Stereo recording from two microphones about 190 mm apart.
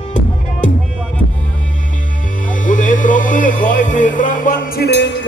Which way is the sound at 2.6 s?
45° left (ahead or behind).